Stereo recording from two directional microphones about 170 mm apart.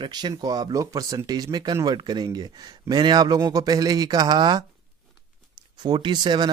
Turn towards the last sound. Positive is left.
turn(degrees=-25)  # may be behind; listen again after turning